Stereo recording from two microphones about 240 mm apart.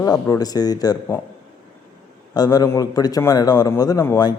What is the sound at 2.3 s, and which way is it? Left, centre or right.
A man's voice, centre.